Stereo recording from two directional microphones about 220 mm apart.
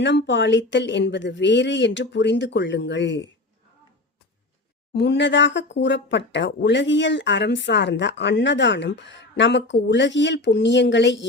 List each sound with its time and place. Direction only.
0.0 s speech: 50° left (ahead or behind)
4.9 s speech: 50° left (ahead or behind)